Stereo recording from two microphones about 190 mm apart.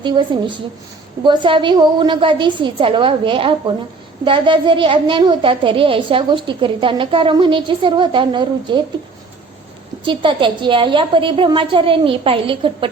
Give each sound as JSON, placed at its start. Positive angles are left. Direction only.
{"t": 0.0, "sound": "a woman's voice", "side_deg": -25}
{"t": 10.1, "sound": "a woman's voice", "side_deg": -25}